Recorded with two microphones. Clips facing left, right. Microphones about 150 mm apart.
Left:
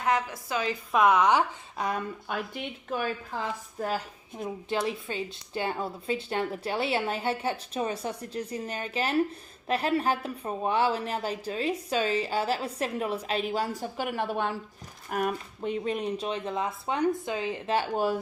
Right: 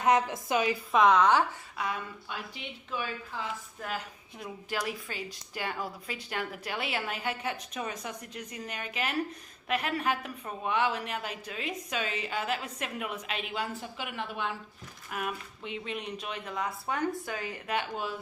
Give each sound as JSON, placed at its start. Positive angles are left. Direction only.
{"t": 0.0, "sound": "a woman's voice", "side_deg": -20}
{"t": 0.9, "sound": "speech", "side_deg": 10}
{"t": 2.2, "sound": "speech", "side_deg": 50}